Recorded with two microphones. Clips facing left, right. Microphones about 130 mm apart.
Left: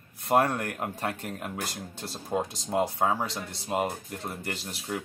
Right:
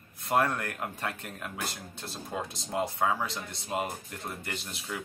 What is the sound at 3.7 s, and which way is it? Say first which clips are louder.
Speech: left 4 dB; 15° left (ahead or behind).